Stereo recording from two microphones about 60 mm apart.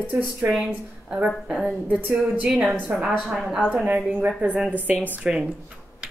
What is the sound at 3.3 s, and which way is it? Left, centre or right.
Speech, centre.